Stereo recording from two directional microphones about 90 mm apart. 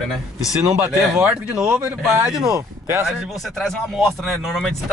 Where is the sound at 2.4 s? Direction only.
40° right (ahead or behind).